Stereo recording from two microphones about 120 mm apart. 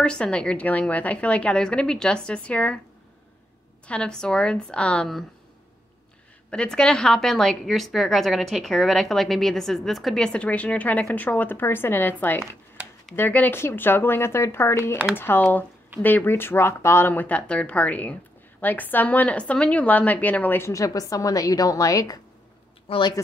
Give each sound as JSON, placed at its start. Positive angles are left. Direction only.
{"t": 0.0, "sound": "a woman's voice", "side_deg": 10}
{"t": 3.8, "sound": "a woman's voice", "side_deg": 10}
{"t": 6.5, "sound": "a woman's voice", "side_deg": 10}
{"t": 22.8, "sound": "speech", "side_deg": 40}